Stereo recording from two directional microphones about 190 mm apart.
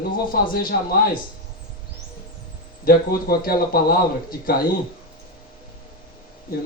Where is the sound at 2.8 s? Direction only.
50° left (ahead or behind).